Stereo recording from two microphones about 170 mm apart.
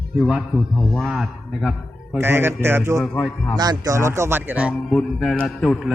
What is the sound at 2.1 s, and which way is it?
Speech, 15° right (ahead or behind).